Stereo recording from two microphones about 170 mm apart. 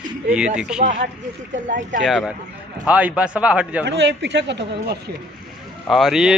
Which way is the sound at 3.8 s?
90° right.